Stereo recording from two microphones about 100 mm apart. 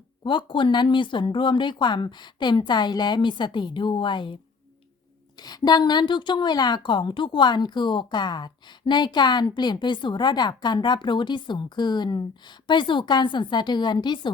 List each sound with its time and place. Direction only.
0.3 s a woman's voice: 50° left (ahead or behind)
5.4 s a woman's voice: 45° left (ahead or behind)